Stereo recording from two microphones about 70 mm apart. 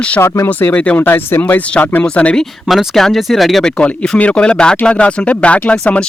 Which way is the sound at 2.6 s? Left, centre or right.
Centre.